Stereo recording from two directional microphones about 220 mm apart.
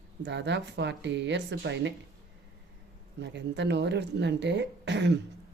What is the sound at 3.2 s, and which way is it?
Speech, 50° right (ahead or behind).